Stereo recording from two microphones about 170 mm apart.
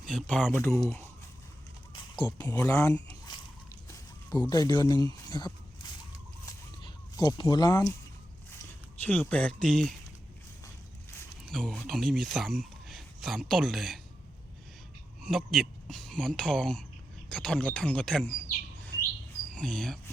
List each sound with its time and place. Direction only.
0.0 s speech: 5° left (ahead or behind)
1.9 s a sound: 25° left (ahead or behind)
2.4 s speech: 15° left (ahead or behind)
6.4 s a sound: 20° left (ahead or behind)
9.0 s speech: 10° left (ahead or behind)
11.4 s speech: 5° left (ahead or behind)
15.2 s speech: centre (ahead or behind)